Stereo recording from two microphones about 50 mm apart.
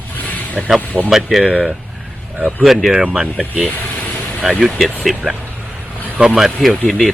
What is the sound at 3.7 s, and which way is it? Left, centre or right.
Vehicle, left.